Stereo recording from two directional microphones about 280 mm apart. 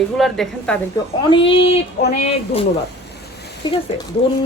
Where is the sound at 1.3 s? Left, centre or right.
Centre.